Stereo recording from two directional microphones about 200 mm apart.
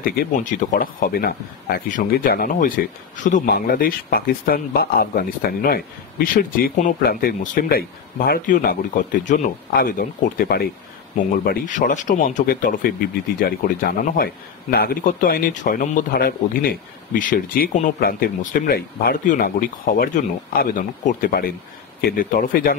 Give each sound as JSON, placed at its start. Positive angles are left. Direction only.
{"t": 0.0, "sound": "a man's voice", "side_deg": 45}